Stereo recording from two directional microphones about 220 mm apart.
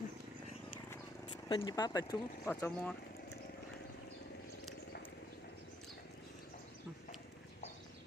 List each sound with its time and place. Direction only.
1.5 s speech: 20° left (ahead or behind)